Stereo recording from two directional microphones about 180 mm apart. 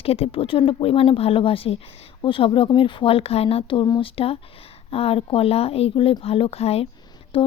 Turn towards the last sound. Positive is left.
turn(degrees=30)  # may be behind; listen again after turning